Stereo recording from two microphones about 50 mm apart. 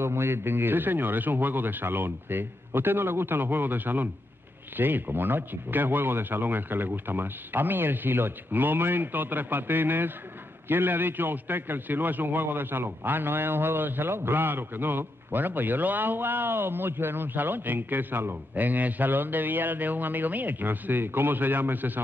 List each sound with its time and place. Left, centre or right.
0.0 s a man's voice: right